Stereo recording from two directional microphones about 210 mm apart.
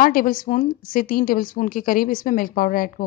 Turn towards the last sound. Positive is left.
turn(degrees=40)  # may be behind; listen again after turning